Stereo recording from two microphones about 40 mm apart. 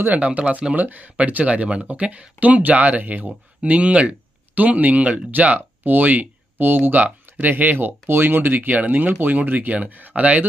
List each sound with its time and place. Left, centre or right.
0.1 s speech: right
0.8 s speech: right
3.6 s speech: right
5.5 s speech: right